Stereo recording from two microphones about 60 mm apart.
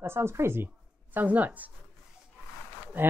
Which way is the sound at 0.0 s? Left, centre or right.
Right.